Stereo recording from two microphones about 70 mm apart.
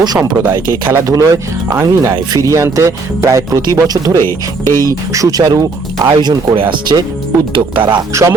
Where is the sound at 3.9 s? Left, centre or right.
Right.